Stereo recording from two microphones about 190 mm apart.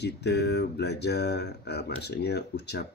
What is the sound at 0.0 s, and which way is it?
Speech, 60° left (ahead or behind).